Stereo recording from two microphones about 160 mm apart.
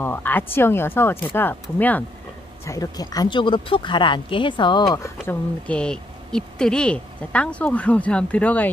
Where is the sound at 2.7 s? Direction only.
20° left (ahead or behind).